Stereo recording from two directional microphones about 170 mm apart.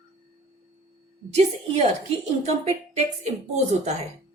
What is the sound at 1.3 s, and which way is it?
Speech, 40° right (ahead or behind).